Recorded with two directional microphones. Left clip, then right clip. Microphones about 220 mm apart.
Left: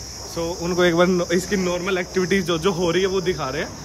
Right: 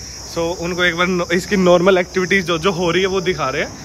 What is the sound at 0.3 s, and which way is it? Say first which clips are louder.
Speech: right 5 dB; 10° left (ahead or behind).